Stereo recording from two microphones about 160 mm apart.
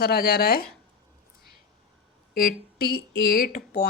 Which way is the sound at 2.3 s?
70° left (ahead or behind).